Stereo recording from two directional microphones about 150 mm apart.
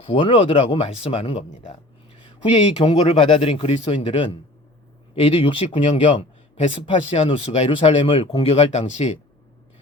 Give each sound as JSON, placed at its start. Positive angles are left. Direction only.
{"t": 0.0, "sound": "speech", "side_deg": 35}
{"t": 2.7, "sound": "speech", "side_deg": 35}